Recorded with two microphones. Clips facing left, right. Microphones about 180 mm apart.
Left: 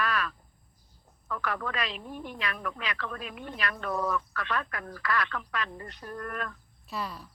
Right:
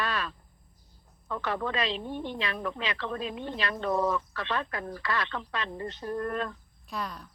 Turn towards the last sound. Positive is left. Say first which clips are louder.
# even
turn(degrees=5)  # may be behind; listen again after turning